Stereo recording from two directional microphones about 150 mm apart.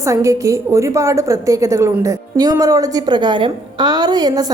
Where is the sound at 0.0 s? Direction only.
20° right (ahead or behind).